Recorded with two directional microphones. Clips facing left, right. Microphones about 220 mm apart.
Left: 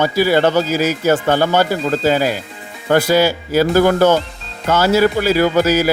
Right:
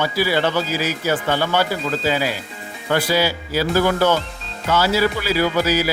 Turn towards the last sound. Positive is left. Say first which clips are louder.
# left 5 dB
turn(degrees=45)  # may be behind; listen again after turning